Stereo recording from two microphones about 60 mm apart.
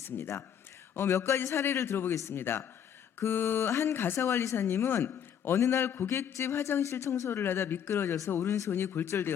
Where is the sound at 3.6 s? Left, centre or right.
Left.